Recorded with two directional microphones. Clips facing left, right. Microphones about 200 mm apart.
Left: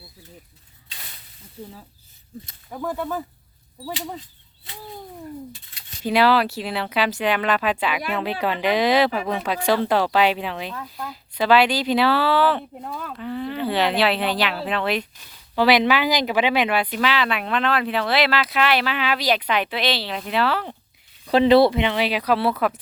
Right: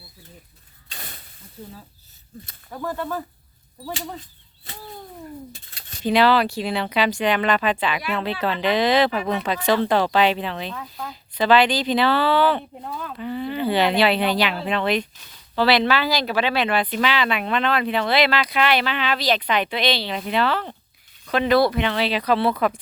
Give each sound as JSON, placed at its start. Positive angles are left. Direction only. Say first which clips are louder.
{"t": 0.9, "sound": "a sound", "louder": "right 5 dB", "side_deg": -50}
{"t": 2.7, "sound": "speech", "louder": "left 1 dB", "side_deg": 5}
{"t": 6.0, "sound": "speech", "louder": "right 1 dB", "side_deg": 5}
{"t": 21.2, "sound": "speech", "louder": "left 4 dB", "side_deg": 30}